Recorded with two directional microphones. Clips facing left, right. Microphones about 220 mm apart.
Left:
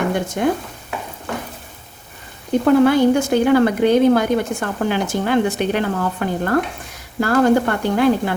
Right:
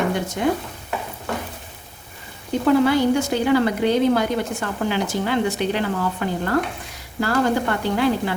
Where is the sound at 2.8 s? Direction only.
50° left (ahead or behind).